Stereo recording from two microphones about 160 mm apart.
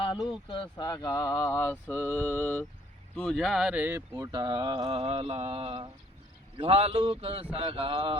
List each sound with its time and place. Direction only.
0.3 s speech: 30° left (ahead or behind); by 4.0 s 10° right (ahead or behind)
4.1 s speech: 25° right (ahead or behind)